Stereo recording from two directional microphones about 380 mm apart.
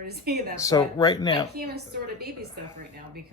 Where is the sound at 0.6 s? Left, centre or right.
Centre.